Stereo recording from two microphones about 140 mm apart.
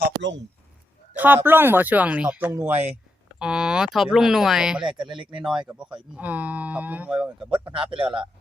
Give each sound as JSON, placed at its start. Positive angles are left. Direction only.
{"t": 1.1, "sound": "speech", "side_deg": -15}
{"t": 4.8, "sound": "a man's voice", "side_deg": -35}
{"t": 5.4, "sound": "speech", "side_deg": -5}
{"t": 7.6, "sound": "a man's voice", "side_deg": -40}